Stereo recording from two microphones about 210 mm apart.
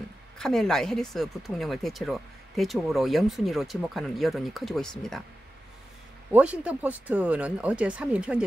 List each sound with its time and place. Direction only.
0.4 s speech: centre (ahead or behind)
6.3 s speech: 5° right (ahead or behind)